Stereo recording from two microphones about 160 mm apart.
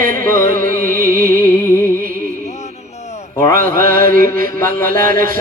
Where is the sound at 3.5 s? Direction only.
60° right (ahead or behind).